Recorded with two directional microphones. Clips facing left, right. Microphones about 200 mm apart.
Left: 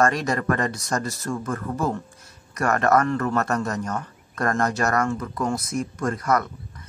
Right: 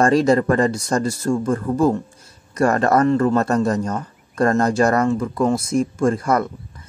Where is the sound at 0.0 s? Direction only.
30° right (ahead or behind).